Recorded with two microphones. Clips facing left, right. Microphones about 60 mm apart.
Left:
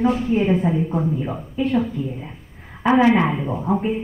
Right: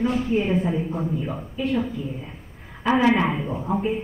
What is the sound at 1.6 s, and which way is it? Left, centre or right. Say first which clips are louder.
Speech: left 4 dB; left.